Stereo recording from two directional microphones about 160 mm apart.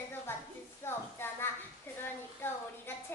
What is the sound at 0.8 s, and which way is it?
Speech, 15° left (ahead or behind).